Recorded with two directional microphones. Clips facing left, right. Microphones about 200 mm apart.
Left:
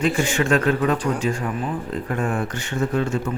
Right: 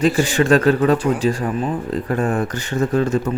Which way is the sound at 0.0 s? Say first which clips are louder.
Right 4 dB; 35° right (ahead or behind).